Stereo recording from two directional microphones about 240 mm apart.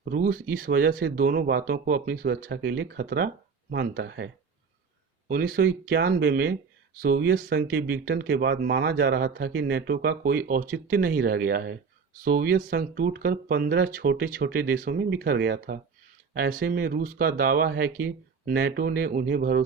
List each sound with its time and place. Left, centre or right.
0.0 s speech: right
5.3 s speech: right